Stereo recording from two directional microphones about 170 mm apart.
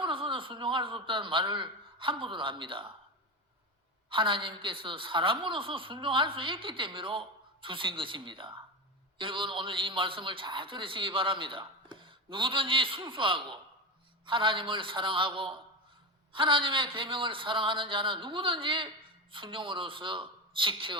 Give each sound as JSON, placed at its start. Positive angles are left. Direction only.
{"t": 0.0, "sound": "a man's voice", "side_deg": -30}
{"t": 4.1, "sound": "a woman's voice", "side_deg": -30}